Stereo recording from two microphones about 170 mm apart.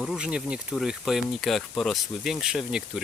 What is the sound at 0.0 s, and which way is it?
Speech, 5° right (ahead or behind).